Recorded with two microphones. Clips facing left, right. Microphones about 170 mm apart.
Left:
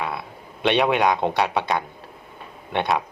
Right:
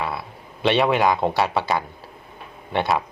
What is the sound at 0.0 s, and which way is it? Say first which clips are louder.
Speech: right 1 dB; centre (ahead or behind).